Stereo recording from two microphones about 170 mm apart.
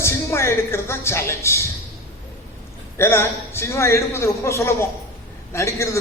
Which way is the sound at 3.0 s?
15° left (ahead or behind).